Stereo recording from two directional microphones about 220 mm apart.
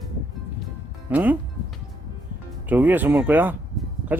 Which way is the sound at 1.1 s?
5° right (ahead or behind).